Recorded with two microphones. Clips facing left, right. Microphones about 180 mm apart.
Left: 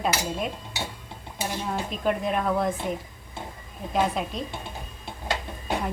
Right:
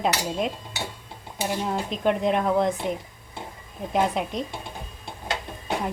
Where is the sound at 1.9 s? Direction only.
20° right (ahead or behind).